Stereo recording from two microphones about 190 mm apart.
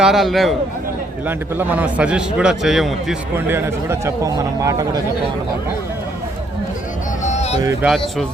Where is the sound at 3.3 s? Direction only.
10° right (ahead or behind).